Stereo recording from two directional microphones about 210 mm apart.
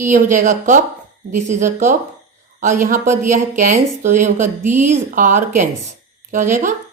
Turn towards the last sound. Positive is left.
turn(degrees=-40)  # may be behind; listen again after turning